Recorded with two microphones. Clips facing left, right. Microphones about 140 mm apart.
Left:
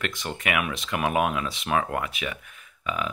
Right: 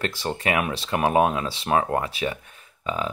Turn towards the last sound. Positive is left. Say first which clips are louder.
# right 2 dB
turn(degrees=-30)  # may be behind; listen again after turning